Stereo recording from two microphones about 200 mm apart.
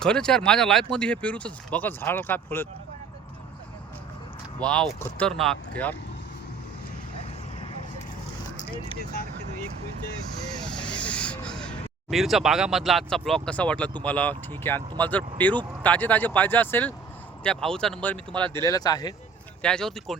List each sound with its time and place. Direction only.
0.0 s speech: 5° left (ahead or behind)
4.6 s speech: 5° left (ahead or behind)
8.5 s vehicle: 25° left (ahead or behind)
10.6 s vehicle: 5° left (ahead or behind)
12.1 s speech: centre (ahead or behind)
18.6 s speech: 20° left (ahead or behind)
19.6 s speech: 5° left (ahead or behind)